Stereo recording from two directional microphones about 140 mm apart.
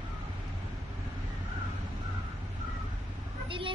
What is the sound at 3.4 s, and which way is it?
Vehicle, 40° right (ahead or behind).